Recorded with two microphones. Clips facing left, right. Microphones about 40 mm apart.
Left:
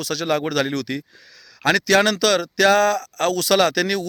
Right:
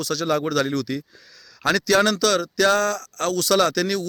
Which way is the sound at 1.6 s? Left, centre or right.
Left.